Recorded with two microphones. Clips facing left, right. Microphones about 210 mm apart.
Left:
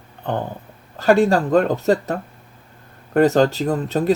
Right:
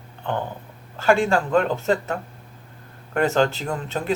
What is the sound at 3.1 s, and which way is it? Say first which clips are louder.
Speech: left 5 dB; 35° left (ahead or behind).